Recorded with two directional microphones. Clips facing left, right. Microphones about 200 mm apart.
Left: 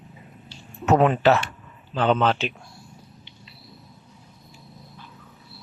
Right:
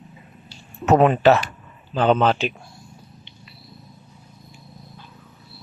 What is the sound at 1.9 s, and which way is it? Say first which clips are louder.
Speech: right 3 dB; 40° right (ahead or behind).